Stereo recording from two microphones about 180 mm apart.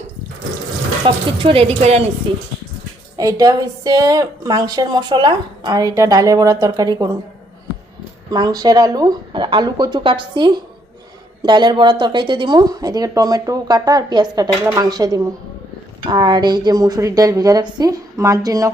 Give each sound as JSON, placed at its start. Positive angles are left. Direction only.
{"t": 1.0, "sound": "a woman's voice", "side_deg": -30}
{"t": 3.2, "sound": "a woman's voice", "side_deg": -20}
{"t": 8.3, "sound": "a woman's voice", "side_deg": -20}